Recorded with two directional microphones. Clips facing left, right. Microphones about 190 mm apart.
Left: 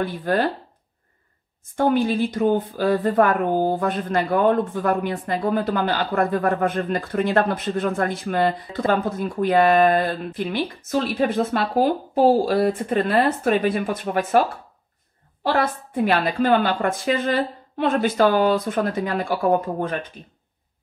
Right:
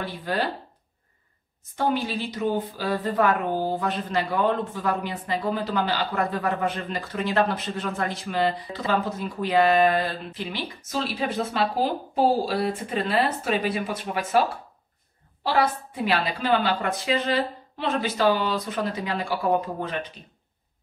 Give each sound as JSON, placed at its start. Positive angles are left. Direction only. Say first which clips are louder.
{"t": 0.0, "sound": "a woman's voice", "louder": "left 6 dB", "side_deg": 50}
{"t": 1.8, "sound": "a woman's voice", "louder": "left 6 dB", "side_deg": 50}
{"t": 12.4, "sound": "a woman's voice", "louder": "left 6 dB", "side_deg": 50}
{"t": 15.4, "sound": "a woman's voice", "louder": "left 2 dB", "side_deg": 50}